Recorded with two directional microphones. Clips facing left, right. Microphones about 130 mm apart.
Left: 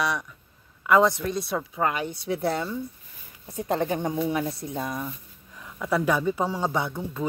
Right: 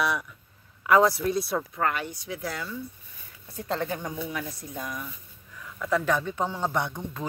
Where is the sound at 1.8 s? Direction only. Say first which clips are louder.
Left 2 dB; 15° left (ahead or behind).